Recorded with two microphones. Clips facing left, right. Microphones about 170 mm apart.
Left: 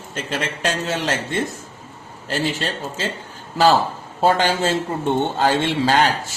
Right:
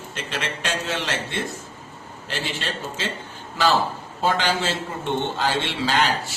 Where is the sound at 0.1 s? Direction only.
40° left (ahead or behind).